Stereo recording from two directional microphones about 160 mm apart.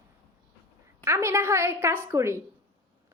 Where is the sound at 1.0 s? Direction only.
15° right (ahead or behind).